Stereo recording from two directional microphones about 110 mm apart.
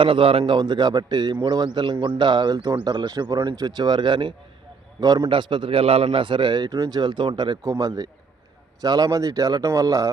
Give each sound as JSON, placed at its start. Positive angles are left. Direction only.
{"t": 0.0, "sound": "a man's voice", "side_deg": -55}